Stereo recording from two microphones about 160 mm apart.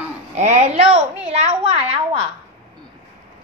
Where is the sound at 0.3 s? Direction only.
45° right (ahead or behind).